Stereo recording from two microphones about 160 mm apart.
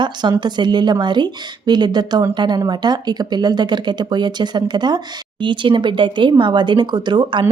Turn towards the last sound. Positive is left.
turn(degrees=-30)  # may be behind; listen again after turning